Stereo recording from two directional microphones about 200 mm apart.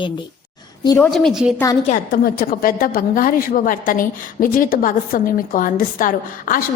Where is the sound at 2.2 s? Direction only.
50° left (ahead or behind).